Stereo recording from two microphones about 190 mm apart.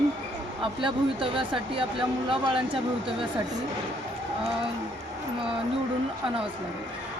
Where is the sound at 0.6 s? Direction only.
25° right (ahead or behind).